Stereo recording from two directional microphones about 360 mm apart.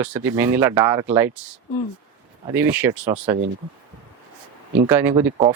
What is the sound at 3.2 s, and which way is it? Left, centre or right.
Speech, centre.